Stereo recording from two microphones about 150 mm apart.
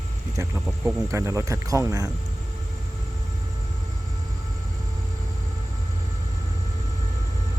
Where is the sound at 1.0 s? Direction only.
20° right (ahead or behind).